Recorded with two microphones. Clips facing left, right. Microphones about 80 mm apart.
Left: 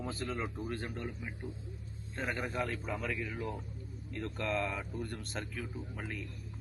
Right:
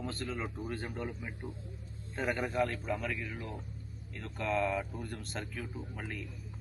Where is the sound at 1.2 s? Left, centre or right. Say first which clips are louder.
Even; right.